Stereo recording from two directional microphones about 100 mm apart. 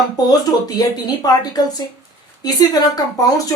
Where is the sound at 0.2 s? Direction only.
40° left (ahead or behind).